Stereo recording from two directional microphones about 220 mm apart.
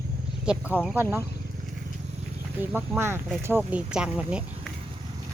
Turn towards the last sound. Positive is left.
turn(degrees=-5)  # may be behind; listen again after turning